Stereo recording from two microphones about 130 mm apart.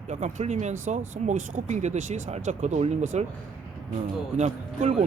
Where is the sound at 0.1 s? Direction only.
65° right (ahead or behind).